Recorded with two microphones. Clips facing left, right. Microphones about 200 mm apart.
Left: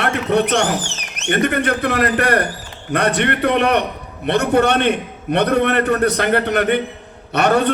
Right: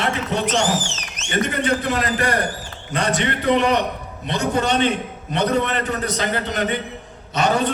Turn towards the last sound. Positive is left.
turn(degrees=60)  # may be behind; listen again after turning